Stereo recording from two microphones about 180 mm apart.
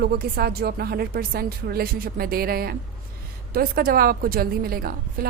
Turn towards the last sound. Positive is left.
turn(degrees=-55)  # may be behind; listen again after turning